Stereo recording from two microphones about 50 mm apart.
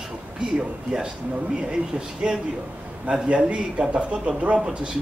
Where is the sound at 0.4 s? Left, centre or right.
Centre.